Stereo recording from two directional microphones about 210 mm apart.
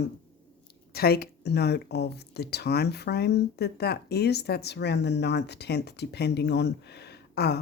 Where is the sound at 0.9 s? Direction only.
50° left (ahead or behind).